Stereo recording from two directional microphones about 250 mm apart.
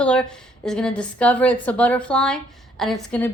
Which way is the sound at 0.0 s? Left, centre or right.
Centre.